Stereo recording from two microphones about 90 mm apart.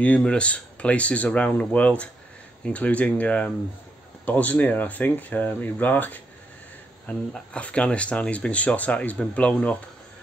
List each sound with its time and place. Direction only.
0.0 s speech: 15° left (ahead or behind)